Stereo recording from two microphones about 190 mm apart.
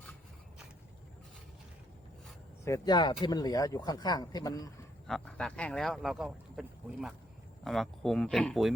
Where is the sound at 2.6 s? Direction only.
20° left (ahead or behind).